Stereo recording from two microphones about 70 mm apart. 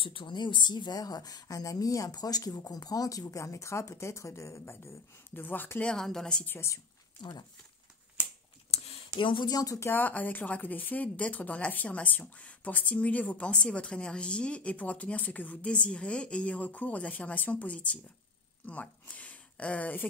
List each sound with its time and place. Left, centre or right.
0.3 s a woman's voice: left
5.9 s a woman's voice: centre
6.4 s speech: left
7.2 s speech: left
9.1 s a woman's voice: left
9.9 s speech: left